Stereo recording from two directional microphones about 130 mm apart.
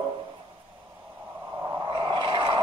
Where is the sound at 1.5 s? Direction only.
35° right (ahead or behind).